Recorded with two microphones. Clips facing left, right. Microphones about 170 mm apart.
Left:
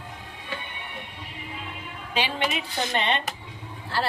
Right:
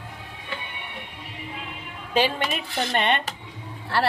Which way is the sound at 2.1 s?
45° right (ahead or behind).